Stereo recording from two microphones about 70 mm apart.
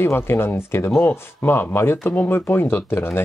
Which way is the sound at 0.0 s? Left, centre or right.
Left.